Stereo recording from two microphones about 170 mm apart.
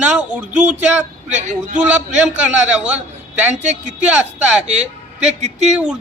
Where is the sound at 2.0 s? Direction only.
5° right (ahead or behind).